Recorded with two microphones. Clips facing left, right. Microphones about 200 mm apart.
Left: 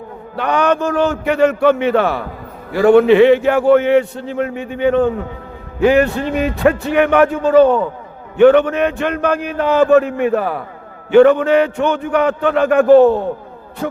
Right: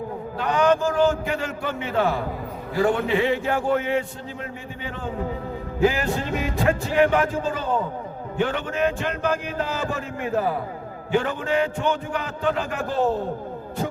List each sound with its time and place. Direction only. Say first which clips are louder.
0.3 s a man's voice: left 4 dB; 70° left (ahead or behind)